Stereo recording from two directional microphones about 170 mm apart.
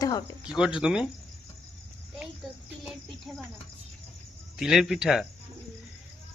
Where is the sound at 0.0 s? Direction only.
20° left (ahead or behind).